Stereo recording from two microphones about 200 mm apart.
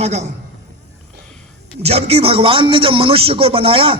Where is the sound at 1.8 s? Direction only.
30° right (ahead or behind).